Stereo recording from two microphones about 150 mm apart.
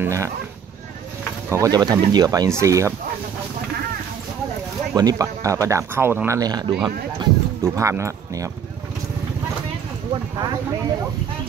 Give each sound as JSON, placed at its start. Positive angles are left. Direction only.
{"t": 0.0, "sound": "speech", "side_deg": -20}
{"t": 1.5, "sound": "speech", "side_deg": -25}
{"t": 4.9, "sound": "speech", "side_deg": -25}